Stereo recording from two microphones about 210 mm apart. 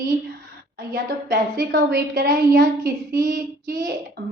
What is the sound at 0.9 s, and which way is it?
A woman's voice, 50° right (ahead or behind).